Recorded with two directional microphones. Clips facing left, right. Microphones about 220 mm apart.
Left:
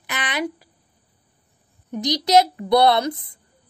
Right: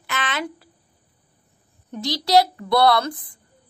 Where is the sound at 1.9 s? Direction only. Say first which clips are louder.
Left 1 dB; 20° left (ahead or behind).